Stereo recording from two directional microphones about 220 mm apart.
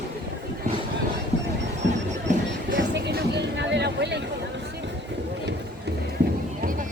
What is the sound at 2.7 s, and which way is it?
Music, 50° right (ahead or behind).